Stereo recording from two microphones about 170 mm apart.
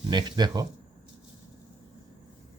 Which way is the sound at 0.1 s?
25° right (ahead or behind).